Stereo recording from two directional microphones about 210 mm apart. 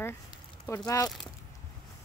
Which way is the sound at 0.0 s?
10° left (ahead or behind).